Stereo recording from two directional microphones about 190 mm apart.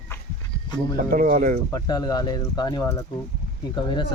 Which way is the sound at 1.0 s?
45° right (ahead or behind).